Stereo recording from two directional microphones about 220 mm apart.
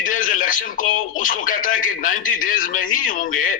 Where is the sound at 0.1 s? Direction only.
35° left (ahead or behind).